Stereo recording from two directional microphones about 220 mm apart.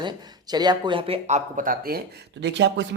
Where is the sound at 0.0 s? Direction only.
20° right (ahead or behind).